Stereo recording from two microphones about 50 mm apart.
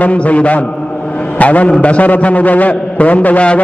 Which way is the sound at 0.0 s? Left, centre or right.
Left.